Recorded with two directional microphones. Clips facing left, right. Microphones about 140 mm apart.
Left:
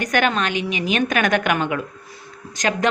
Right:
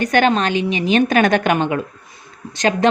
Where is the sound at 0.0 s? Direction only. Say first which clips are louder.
Right 5 dB; 30° right (ahead or behind).